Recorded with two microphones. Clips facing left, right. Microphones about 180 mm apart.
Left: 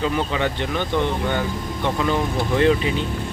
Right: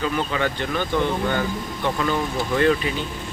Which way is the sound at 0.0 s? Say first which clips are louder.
Left 1 dB; 20° left (ahead or behind).